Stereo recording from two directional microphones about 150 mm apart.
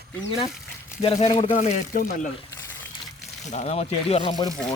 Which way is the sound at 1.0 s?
45° left (ahead or behind).